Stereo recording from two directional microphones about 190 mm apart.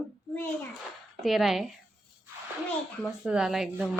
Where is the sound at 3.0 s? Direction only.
5° right (ahead or behind).